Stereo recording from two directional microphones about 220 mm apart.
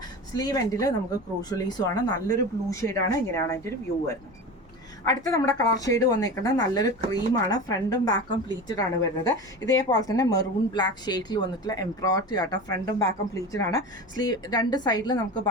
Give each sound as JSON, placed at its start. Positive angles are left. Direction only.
{"t": 0.3, "sound": "a woman's voice", "side_deg": 15}